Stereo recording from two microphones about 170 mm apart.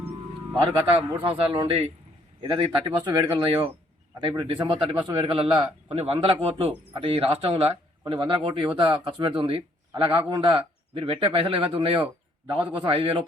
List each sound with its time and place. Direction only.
0.6 s a man's voice: 30° right (ahead or behind)